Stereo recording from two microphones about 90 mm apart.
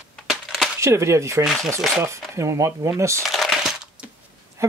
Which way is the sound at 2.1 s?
35° right (ahead or behind).